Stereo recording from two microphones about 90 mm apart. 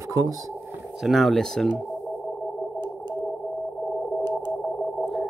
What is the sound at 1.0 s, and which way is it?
Speech, centre (ahead or behind).